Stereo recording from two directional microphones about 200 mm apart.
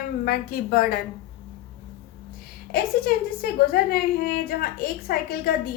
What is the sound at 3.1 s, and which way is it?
A woman's voice, 50° left (ahead or behind).